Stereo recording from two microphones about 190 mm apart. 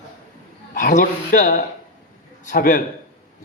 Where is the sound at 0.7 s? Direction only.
45° left (ahead or behind).